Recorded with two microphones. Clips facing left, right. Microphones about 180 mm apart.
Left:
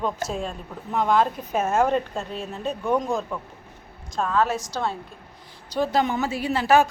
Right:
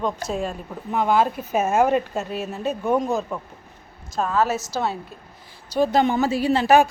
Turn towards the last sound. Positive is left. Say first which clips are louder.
# right 4 dB
turn(degrees=-25)  # may be behind; listen again after turning